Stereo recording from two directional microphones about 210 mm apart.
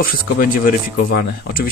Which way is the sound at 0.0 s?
45° left (ahead or behind).